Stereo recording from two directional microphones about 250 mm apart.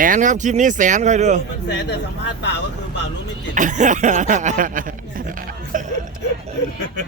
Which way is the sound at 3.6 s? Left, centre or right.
Right.